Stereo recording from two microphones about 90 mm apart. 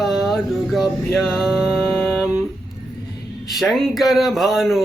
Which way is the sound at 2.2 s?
Centre (ahead or behind).